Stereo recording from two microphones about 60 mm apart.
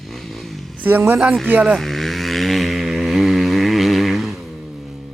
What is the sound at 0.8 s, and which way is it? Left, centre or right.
Speech, right.